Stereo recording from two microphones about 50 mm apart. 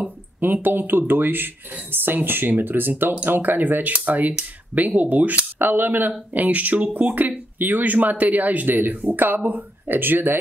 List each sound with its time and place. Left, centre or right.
0.0 s speech: right
5.6 s speech: right